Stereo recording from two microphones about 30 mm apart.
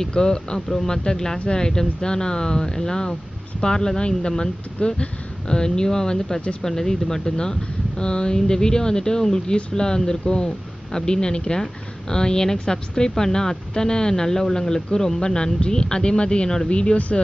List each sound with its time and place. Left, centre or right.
0.1 s speech: left
4.7 s speech: left
5.5 s speech: left